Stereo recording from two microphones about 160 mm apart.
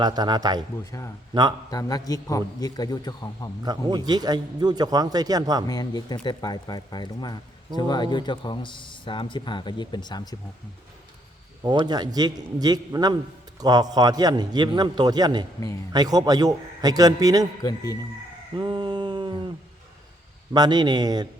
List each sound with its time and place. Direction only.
0.0 s a man's voice: 25° right (ahead or behind)
0.9 s a man's voice: 20° left (ahead or behind)
1.3 s a man's voice: 25° right (ahead or behind)
1.7 s a man's voice: 25° left (ahead or behind)
3.6 s a man's voice: 25° right (ahead or behind)
5.6 s a man's voice: 25° left (ahead or behind)
11.6 s a man's voice: 25° right (ahead or behind)
17.6 s a man's voice: 25° left (ahead or behind)
18.5 s a sound: 30° right (ahead or behind)
20.5 s a man's voice: 25° right (ahead or behind)